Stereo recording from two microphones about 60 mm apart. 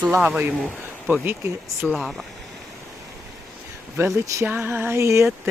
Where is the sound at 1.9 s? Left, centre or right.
Centre.